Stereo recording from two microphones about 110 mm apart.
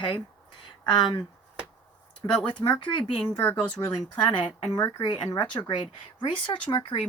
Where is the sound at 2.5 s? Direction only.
40° left (ahead or behind).